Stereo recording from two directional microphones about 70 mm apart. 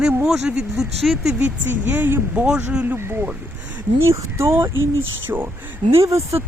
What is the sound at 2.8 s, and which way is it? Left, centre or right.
Speech, right.